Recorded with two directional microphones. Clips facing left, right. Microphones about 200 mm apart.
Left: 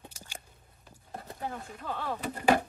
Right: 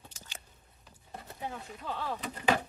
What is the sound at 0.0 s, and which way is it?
Biting, 15° left (ahead or behind).